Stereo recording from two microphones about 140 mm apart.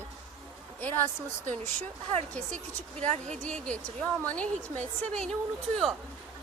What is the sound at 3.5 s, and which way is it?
A woman's voice, 10° left (ahead or behind).